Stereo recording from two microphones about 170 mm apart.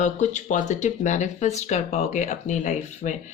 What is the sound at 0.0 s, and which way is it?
Speech, 45° left (ahead or behind).